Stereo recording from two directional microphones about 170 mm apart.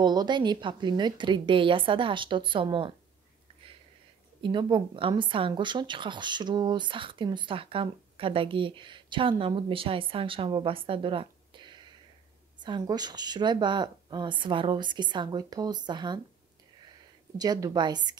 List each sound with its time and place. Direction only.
0.0 s speech: 25° right (ahead or behind)
4.4 s a woman's voice: 30° right (ahead or behind)
17.4 s speech: 20° right (ahead or behind)